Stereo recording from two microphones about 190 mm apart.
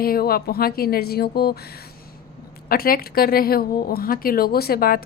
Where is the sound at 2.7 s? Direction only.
50° left (ahead or behind).